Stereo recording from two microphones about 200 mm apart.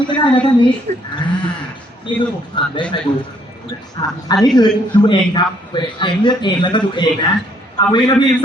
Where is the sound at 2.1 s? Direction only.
25° left (ahead or behind).